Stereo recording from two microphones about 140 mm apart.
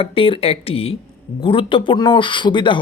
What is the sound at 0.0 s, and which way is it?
Speech, 40° left (ahead or behind).